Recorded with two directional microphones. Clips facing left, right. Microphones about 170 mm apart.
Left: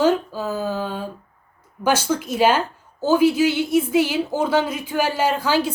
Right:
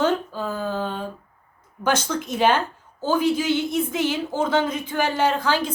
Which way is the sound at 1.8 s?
10° left (ahead or behind).